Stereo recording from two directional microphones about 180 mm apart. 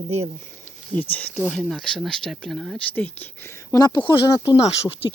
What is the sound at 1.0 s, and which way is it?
Speech, 10° left (ahead or behind).